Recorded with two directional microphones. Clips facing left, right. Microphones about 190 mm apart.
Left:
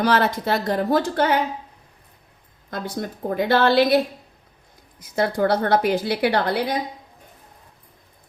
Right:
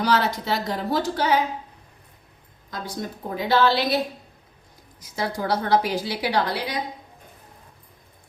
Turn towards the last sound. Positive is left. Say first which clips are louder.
# left 3 dB
turn(degrees=55)  # may be behind; listen again after turning